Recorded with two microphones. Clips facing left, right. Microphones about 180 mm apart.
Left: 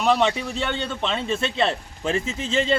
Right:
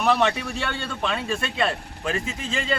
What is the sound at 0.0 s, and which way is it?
Speech, 15° left (ahead or behind).